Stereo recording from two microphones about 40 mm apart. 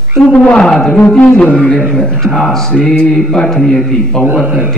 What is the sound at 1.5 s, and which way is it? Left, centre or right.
Speech, left.